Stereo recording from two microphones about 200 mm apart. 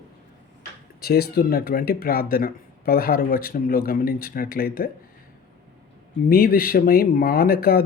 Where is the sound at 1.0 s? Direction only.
50° left (ahead or behind).